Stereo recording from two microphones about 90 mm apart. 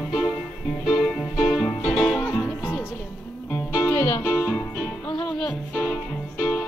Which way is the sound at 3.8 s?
20° left (ahead or behind).